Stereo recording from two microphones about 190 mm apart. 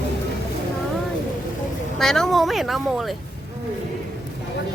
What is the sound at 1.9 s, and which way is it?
Speech, centre (ahead or behind).